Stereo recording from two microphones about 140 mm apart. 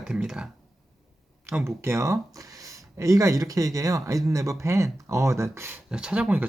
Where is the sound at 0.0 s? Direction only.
5° right (ahead or behind).